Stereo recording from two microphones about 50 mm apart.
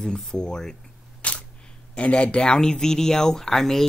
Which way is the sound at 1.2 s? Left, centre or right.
Left.